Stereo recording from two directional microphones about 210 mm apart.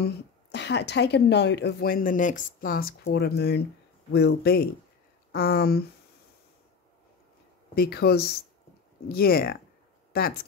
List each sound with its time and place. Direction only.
0.0 s speech: 55° left (ahead or behind)
7.7 s speech: 50° left (ahead or behind)